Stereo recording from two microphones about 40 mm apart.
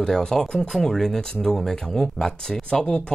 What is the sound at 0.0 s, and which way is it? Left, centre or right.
Speech, centre.